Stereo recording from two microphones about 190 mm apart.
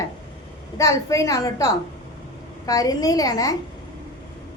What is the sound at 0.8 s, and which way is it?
A woman's voice, 15° left (ahead or behind).